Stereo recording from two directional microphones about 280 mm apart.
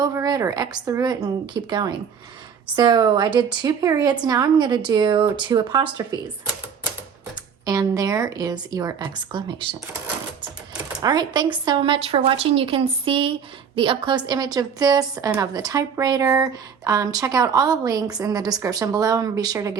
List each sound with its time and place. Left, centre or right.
0.0 s a woman's voice: centre
7.6 s a woman's voice: centre
11.0 s a woman's voice: centre